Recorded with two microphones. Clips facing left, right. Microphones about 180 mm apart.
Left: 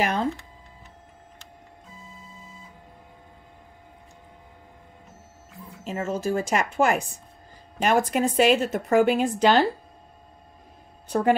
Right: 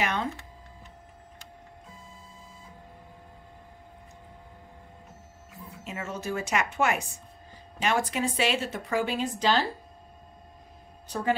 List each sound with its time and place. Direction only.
0.0 s a woman's voice: 35° left (ahead or behind)
5.9 s a woman's voice: 35° left (ahead or behind)
7.8 s a woman's voice: 45° left (ahead or behind)
11.1 s speech: 60° left (ahead or behind)